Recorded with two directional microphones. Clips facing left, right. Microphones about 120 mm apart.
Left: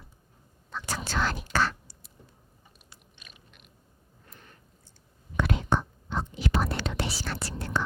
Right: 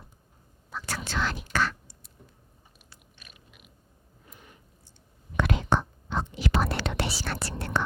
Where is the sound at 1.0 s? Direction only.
40° left (ahead or behind).